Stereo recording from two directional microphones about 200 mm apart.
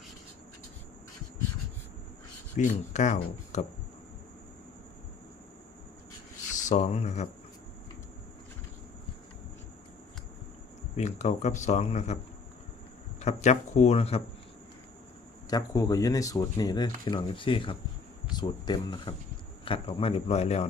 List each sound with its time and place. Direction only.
2.6 s speech: 35° left (ahead or behind)
6.6 s speech: 35° left (ahead or behind)
10.9 s speech: 35° left (ahead or behind)
13.1 s speech: 35° left (ahead or behind)
15.4 s speech: 20° left (ahead or behind)